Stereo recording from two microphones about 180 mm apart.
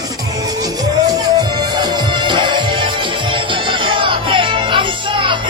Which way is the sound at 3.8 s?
30° right (ahead or behind).